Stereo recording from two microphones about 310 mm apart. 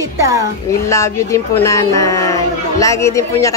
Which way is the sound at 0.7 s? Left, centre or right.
Centre.